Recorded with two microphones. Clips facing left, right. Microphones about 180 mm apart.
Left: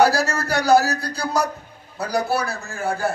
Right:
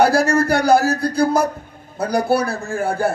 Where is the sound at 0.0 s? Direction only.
55° right (ahead or behind).